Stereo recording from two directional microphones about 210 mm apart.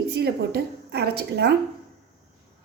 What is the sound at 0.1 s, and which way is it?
A woman's voice, 50° right (ahead or behind).